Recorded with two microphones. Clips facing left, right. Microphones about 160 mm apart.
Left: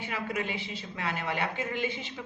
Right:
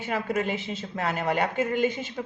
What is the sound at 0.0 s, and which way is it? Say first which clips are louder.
A man's voice: right 6 dB; 45° right (ahead or behind).